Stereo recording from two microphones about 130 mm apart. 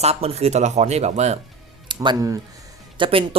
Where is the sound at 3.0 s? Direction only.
45° right (ahead or behind).